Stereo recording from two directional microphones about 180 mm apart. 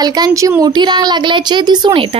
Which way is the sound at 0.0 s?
20° right (ahead or behind).